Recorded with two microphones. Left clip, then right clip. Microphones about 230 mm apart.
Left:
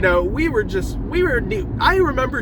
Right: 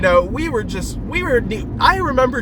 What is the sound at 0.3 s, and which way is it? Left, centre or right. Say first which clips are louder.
Speech: left 2 dB; centre.